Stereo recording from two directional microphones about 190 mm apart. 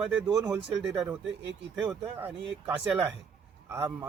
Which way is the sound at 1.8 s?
5° right (ahead or behind).